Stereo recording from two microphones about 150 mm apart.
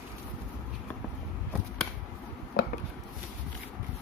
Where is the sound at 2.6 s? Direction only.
90° left.